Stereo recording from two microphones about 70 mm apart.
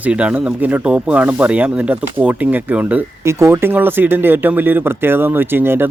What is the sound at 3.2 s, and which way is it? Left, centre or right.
Speech, right.